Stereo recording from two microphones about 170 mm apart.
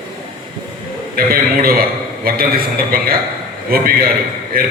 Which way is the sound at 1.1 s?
60° right (ahead or behind).